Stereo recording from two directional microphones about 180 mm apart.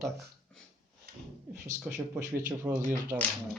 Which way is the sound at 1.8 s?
5° right (ahead or behind).